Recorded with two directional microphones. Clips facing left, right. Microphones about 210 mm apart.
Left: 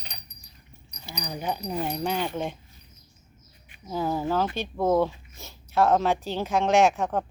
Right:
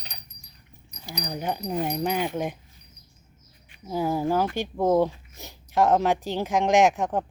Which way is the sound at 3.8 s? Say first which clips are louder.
Right 2 dB; 10° right (ahead or behind).